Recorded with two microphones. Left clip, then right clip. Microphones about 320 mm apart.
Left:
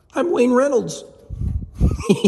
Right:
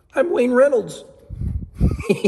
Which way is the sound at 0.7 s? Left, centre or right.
Left.